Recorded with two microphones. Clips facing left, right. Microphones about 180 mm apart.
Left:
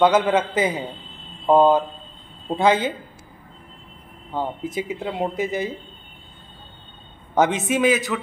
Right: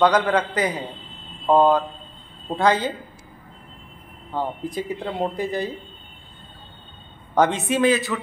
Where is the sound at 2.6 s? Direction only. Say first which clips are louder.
Left 1 dB; 20° left (ahead or behind).